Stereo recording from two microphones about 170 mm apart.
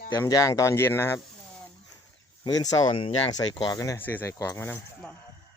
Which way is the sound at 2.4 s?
20° left (ahead or behind).